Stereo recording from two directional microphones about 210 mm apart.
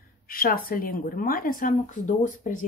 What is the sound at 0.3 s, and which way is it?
A woman's voice, 45° left (ahead or behind).